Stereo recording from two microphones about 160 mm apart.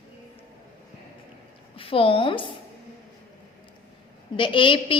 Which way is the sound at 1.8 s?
35° left (ahead or behind).